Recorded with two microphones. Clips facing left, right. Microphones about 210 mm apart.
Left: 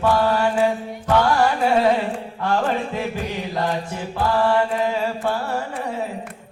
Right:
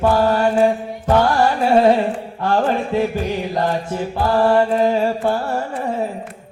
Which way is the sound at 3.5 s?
40° right (ahead or behind).